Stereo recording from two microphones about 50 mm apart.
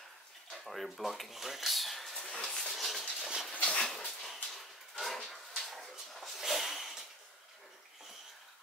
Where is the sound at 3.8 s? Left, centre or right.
Centre.